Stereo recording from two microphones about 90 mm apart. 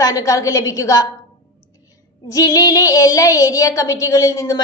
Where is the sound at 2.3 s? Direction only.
40° left (ahead or behind).